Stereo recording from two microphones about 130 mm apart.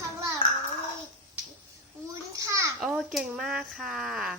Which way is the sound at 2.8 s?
5° right (ahead or behind).